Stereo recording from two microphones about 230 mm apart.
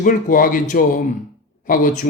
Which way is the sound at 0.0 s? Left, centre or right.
Left.